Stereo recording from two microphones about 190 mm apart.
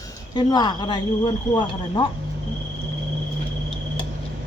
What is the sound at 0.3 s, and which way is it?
Speech, 20° left (ahead or behind).